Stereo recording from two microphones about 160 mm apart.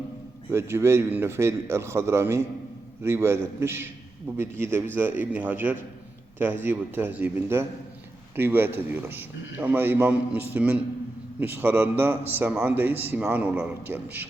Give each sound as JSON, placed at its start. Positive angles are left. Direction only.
{"t": 0.5, "sound": "a man's voice", "side_deg": -15}